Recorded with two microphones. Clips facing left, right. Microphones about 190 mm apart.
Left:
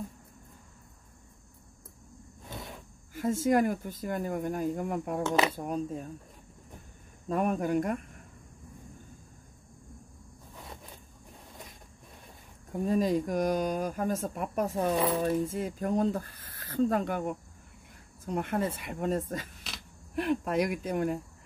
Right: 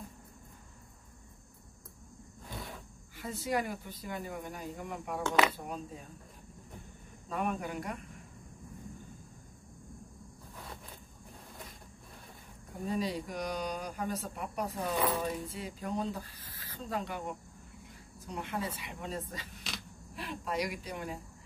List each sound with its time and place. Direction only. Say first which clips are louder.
3.2 s speech: left 9 dB; 45° left (ahead or behind)
7.2 s speech: left 7 dB; 45° left (ahead or behind)
12.8 s speech: left 7 dB; 45° left (ahead or behind)